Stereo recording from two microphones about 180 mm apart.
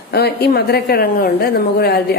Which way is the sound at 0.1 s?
65° left (ahead or behind).